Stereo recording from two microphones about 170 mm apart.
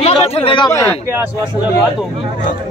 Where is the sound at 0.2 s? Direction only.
35° left (ahead or behind).